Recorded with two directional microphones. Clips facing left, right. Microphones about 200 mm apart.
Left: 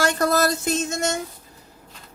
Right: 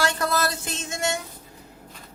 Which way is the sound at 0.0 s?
45° left (ahead or behind).